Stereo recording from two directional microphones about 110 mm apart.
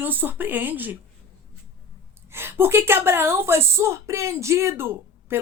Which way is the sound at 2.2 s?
20° right (ahead or behind).